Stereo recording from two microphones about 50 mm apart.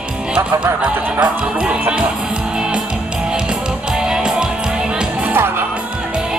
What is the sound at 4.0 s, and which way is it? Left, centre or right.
Music, centre.